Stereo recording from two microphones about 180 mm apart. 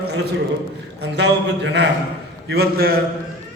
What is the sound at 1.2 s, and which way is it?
Speech, 70° right (ahead or behind).